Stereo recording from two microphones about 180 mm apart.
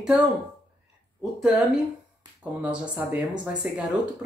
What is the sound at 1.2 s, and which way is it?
Speech, 5° right (ahead or behind).